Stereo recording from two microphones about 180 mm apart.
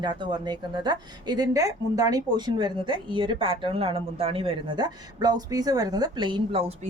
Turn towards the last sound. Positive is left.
turn(degrees=-30)  # may be behind; listen again after turning